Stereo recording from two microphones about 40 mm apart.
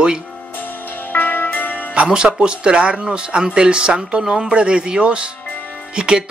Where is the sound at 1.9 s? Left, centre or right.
Right.